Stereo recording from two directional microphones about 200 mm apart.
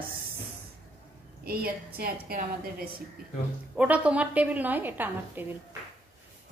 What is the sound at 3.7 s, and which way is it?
A woman's voice, 5° right (ahead or behind).